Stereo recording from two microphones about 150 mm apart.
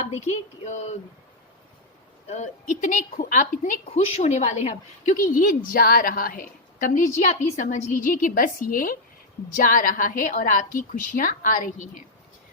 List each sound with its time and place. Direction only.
0.0 s a sound: 50° left (ahead or behind)
2.3 s a woman's voice: 55° left (ahead or behind)
3.8 s a woman's voice: 45° left (ahead or behind)
5.1 s a woman's voice: 65° left (ahead or behind)